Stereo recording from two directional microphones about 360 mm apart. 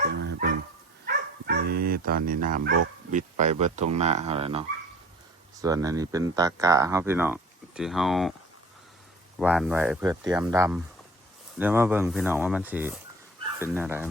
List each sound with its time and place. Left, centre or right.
0.0 s dog: right
3.1 s speech: right; by 8.3 s centre
9.4 s speech: centre